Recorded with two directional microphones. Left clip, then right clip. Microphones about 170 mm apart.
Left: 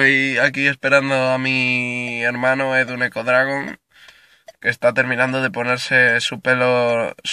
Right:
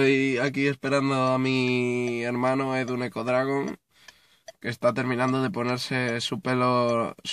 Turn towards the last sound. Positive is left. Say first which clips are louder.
# left 7 dB
turn(degrees=-10)  # may be behind; listen again after turning